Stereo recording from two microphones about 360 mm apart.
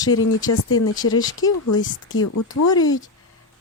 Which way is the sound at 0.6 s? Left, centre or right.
Left.